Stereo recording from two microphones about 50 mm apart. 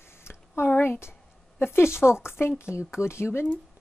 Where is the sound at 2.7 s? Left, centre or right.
Left.